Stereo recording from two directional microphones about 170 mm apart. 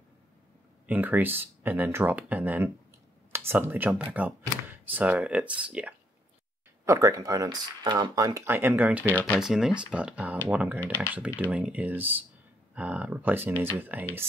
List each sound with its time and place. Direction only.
0.8 s speech: 10° right (ahead or behind)
6.8 s speech: 20° right (ahead or behind)
9.0 s speech: 10° left (ahead or behind)
9.4 s speech: 5° right (ahead or behind)